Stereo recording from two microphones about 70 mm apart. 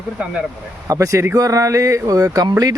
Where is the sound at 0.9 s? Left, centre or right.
Right.